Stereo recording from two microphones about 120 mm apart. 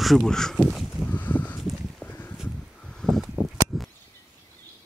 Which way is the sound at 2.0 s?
15° left (ahead or behind).